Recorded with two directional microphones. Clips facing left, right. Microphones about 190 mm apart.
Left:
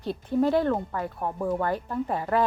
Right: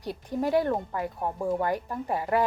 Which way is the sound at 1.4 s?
25° right (ahead or behind).